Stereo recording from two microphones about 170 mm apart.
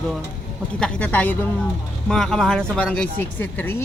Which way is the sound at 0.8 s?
5° left (ahead or behind).